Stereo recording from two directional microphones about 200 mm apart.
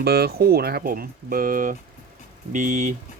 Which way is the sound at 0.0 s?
50° right (ahead or behind).